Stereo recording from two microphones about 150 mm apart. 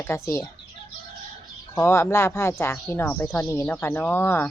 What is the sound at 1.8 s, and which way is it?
A woman's voice, 15° left (ahead or behind).